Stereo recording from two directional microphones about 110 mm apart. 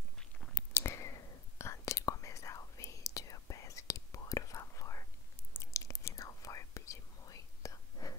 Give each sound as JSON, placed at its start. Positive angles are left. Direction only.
{"t": 0.2, "sound": "chewing", "side_deg": 10}
{"t": 0.7, "sound": "whispering", "side_deg": 25}